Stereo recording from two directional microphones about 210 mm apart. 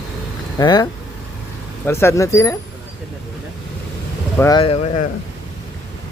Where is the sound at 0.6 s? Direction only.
20° left (ahead or behind).